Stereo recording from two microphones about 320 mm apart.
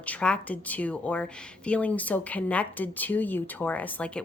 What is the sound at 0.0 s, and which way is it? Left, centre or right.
Speech, centre.